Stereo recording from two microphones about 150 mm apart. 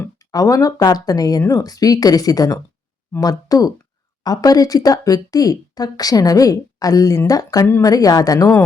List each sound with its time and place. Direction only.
0.3 s speech: 25° left (ahead or behind)